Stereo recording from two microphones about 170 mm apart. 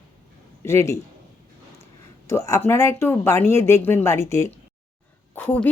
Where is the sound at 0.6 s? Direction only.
15° left (ahead or behind).